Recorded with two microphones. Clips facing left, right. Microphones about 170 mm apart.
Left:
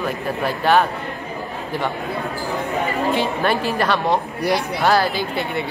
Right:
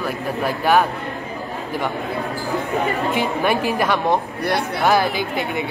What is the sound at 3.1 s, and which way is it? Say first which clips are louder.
A woman's voice: even; 15° right (ahead or behind).